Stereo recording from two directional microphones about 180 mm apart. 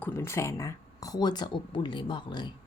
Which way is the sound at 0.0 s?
10° left (ahead or behind).